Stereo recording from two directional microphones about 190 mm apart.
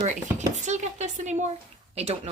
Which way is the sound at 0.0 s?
40° right (ahead or behind).